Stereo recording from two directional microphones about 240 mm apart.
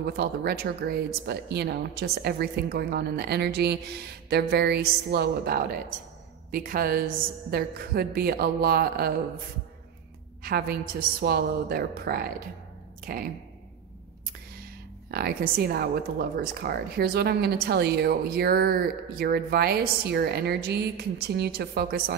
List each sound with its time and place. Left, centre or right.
0.0 s speech: right
10.4 s speech: right
15.0 s speech: right